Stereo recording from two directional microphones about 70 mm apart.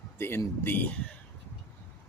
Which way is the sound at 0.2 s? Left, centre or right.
Left.